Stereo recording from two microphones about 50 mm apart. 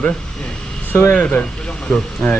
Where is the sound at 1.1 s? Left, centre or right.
Left.